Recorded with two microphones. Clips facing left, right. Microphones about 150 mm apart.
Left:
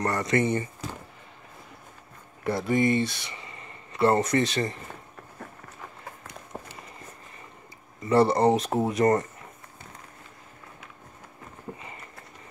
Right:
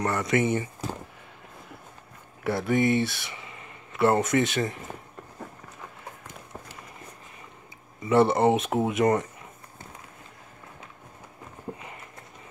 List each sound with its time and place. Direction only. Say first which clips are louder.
0.0 s speech: even; centre (ahead or behind)
2.4 s speech: even; centre (ahead or behind)
6.5 s run: left 4 dB; 35° left (ahead or behind)
8.0 s speech: even; centre (ahead or behind)